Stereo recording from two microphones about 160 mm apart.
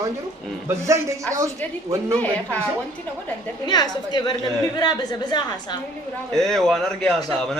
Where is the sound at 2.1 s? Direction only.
10° left (ahead or behind).